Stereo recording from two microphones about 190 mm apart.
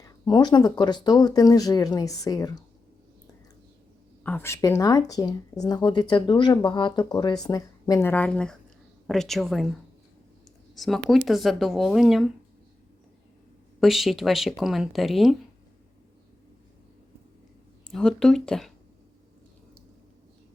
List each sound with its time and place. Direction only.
0.0 s speech: 20° left (ahead or behind)
4.2 s speech: 10° left (ahead or behind)
10.8 s speech: centre (ahead or behind)
13.7 s speech: centre (ahead or behind)
17.8 s speech: 5° left (ahead or behind)